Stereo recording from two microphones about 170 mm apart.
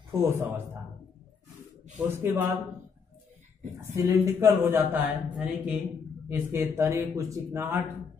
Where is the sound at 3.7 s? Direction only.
15° right (ahead or behind).